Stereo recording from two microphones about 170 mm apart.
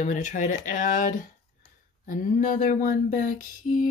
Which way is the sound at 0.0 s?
45° left (ahead or behind).